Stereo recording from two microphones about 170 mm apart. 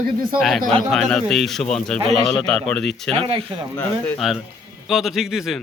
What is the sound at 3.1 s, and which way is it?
Speech, 35° right (ahead or behind).